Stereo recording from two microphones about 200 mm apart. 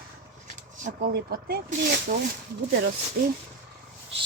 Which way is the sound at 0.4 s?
45° right (ahead or behind).